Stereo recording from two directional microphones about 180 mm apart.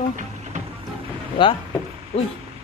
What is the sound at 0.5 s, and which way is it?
Music, 40° right (ahead or behind).